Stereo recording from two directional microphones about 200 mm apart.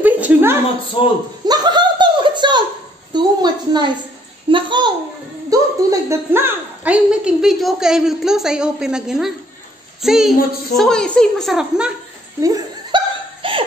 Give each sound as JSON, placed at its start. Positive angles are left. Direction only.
{"t": 0.0, "sound": "a sound", "side_deg": -10}
{"t": 1.0, "sound": "a man's voice", "side_deg": 25}
{"t": 1.4, "sound": "chuckle", "side_deg": -20}
{"t": 3.1, "sound": "a woman's voice", "side_deg": -20}
{"t": 12.4, "sound": "hiccup", "side_deg": -15}